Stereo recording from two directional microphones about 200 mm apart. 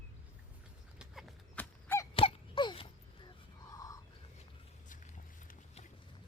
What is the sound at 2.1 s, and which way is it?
Wail, 25° left (ahead or behind).